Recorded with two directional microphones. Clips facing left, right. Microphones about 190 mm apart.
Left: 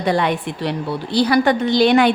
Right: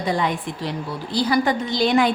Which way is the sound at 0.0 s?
70° left (ahead or behind).